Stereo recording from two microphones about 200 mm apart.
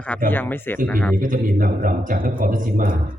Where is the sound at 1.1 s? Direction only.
45° right (ahead or behind).